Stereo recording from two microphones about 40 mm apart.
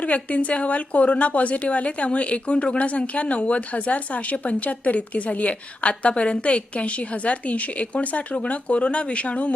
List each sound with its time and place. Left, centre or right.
0.0 s a woman's voice: left